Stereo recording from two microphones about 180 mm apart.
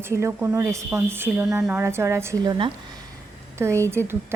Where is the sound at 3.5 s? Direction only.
15° right (ahead or behind).